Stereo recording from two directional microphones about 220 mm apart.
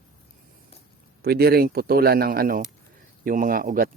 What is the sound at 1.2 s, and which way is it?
Speech, 45° right (ahead or behind).